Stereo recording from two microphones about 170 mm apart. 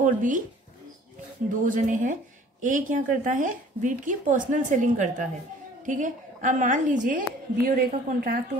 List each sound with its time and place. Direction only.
0.0 s speech: 50° right (ahead or behind)
1.6 s a woman's voice: 50° right (ahead or behind)